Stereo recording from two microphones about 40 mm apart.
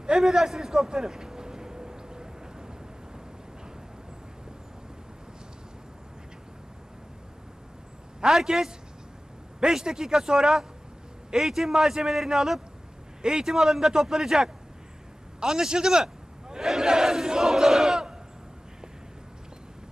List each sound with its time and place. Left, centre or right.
0.0 s a sound: centre
8.2 s a man's voice: centre
16.5 s battle cry: centre